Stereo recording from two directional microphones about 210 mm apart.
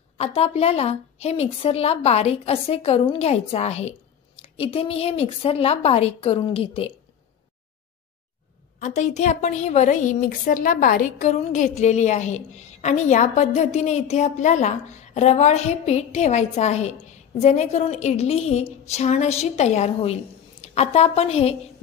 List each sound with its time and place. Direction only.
0.2 s a woman's voice: 30° left (ahead or behind)
8.7 s a woman's voice: 35° left (ahead or behind)